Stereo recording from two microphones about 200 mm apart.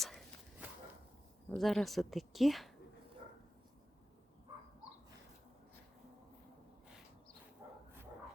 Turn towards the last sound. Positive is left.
turn(degrees=-10)  # may be behind; listen again after turning